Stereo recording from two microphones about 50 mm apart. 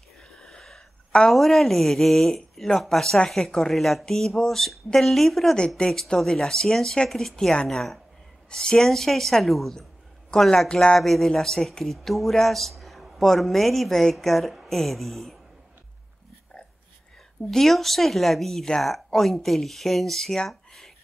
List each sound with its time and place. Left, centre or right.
0.2 s a sound: centre
1.3 s speech: centre
8.5 s speech: centre
10.7 s speech: centre
11.0 s speech: centre
17.5 s speech: centre
20.4 s a sound: centre